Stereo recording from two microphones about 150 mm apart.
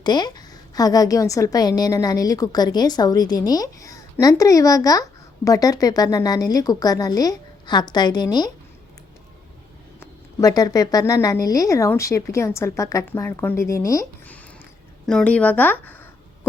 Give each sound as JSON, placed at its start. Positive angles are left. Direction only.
{"t": 0.0, "sound": "a woman's voice", "side_deg": 30}
{"t": 10.0, "sound": "a woman's voice", "side_deg": 25}
{"t": 15.0, "sound": "speech", "side_deg": 5}